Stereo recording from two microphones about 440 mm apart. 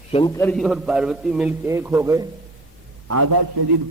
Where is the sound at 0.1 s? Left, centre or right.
Centre.